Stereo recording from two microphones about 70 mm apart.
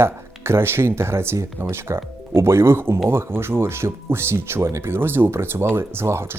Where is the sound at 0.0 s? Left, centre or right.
Right.